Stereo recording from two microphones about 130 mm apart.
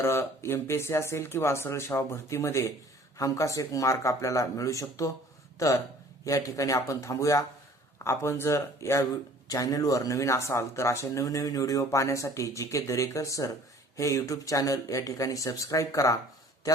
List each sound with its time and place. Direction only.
0.0 s speech: 20° left (ahead or behind)